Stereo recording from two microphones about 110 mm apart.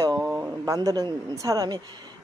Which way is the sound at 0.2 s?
20° right (ahead or behind).